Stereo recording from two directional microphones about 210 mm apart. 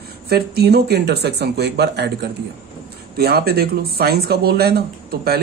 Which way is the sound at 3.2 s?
50° right (ahead or behind).